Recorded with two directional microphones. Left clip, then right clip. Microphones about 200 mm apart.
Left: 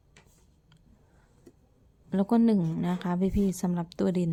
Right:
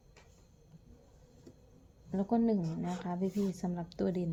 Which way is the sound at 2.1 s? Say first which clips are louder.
Left 6 dB; 35° left (ahead or behind).